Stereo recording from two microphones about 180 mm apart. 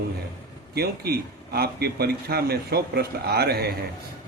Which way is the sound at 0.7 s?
60° right (ahead or behind).